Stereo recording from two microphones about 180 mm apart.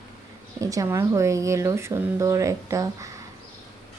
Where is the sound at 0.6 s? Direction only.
20° right (ahead or behind).